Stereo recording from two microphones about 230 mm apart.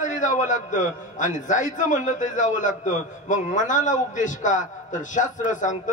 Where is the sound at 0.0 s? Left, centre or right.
Left.